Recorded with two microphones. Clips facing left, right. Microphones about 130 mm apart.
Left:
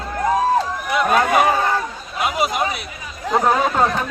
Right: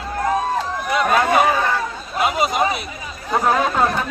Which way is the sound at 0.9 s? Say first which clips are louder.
Even; centre (ahead or behind).